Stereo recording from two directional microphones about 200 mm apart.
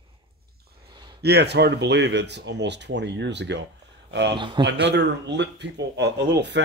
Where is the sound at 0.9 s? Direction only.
20° right (ahead or behind).